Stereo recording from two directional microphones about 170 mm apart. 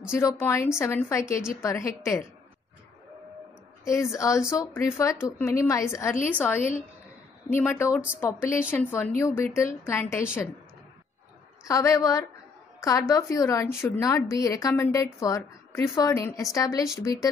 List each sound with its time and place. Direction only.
0.1 s a woman's voice: 15° left (ahead or behind)
3.8 s a woman's voice: 15° left (ahead or behind)
11.6 s a woman's voice: 20° left (ahead or behind)